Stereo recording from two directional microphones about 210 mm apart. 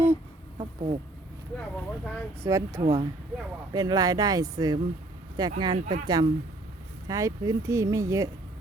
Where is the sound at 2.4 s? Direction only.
15° right (ahead or behind).